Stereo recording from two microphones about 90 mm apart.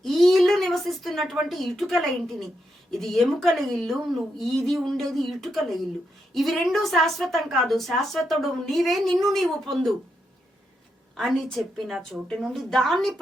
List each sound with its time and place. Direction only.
0.0 s a sound: centre (ahead or behind)
2.9 s a woman's voice: 5° left (ahead or behind)
11.2 s a woman's voice: 5° left (ahead or behind)